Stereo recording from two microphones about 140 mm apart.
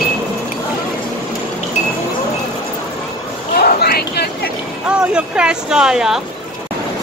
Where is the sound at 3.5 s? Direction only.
90° left.